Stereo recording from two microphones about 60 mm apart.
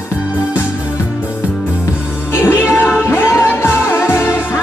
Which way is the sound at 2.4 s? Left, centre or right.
Left.